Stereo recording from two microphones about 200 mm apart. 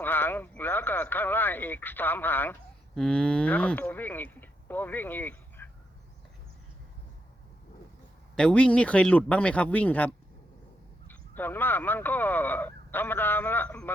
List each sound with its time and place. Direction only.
0.0 s speech: 10° left (ahead or behind)
8.4 s speech: 5° left (ahead or behind)